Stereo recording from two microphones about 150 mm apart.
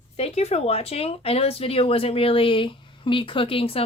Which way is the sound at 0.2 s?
45° left (ahead or behind).